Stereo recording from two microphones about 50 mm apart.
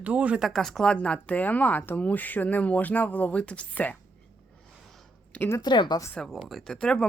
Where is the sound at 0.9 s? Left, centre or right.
Left.